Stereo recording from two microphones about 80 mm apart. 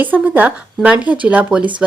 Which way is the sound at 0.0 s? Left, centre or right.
Right.